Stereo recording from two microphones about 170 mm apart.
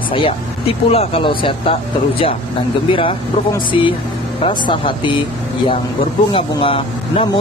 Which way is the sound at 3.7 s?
30° left (ahead or behind).